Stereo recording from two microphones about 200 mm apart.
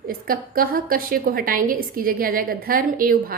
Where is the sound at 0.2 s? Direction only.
45° right (ahead or behind).